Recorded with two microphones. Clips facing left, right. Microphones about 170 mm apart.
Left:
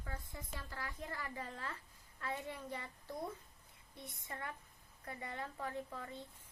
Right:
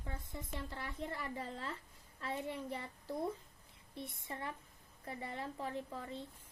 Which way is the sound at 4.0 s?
25° right (ahead or behind).